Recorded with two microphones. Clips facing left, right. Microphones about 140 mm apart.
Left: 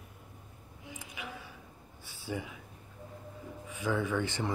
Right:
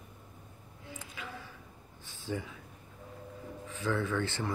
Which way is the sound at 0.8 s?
15° left (ahead or behind).